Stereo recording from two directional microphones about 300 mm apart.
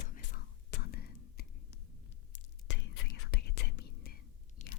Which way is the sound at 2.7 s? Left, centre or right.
Left.